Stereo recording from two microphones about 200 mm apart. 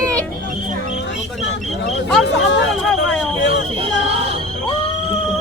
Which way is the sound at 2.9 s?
5° left (ahead or behind).